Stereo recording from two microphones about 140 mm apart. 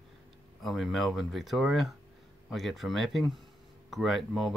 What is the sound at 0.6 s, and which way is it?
Speech, centre (ahead or behind).